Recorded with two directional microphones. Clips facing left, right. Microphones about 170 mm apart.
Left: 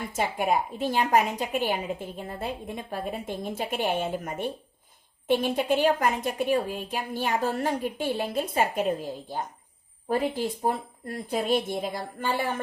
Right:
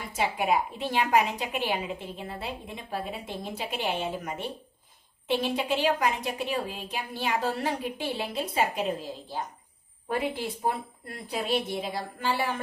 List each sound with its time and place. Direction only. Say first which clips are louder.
0.2 s a woman's voice: even; 45° left (ahead or behind)